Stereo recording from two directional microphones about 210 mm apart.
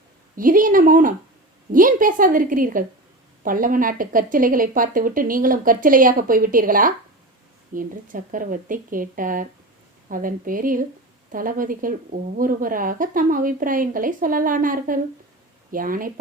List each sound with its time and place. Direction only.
0.3 s a woman's voice: 40° right (ahead or behind)